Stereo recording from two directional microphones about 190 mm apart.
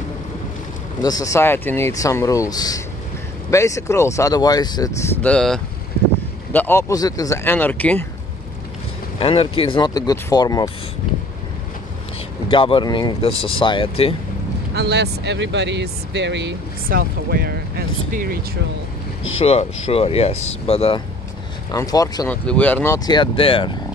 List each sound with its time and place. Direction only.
1.0 s speech: 20° left (ahead or behind)
5.2 s speech: 5° left (ahead or behind)
9.2 s speech: 30° left (ahead or behind)
12.4 s speech: 25° left (ahead or behind)
14.8 s speech: 60° right (ahead or behind)
19.4 s speech: 30° left (ahead or behind)
21.7 s speech: 20° left (ahead or behind)
22.9 s speech: 20° left (ahead or behind)